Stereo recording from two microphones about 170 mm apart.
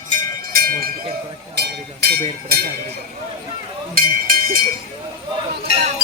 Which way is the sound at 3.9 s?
55° right (ahead or behind).